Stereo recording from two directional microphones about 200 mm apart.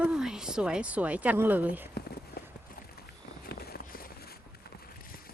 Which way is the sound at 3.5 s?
50° left (ahead or behind).